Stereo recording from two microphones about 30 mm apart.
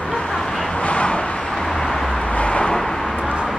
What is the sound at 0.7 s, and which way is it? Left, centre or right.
Vehicle, left.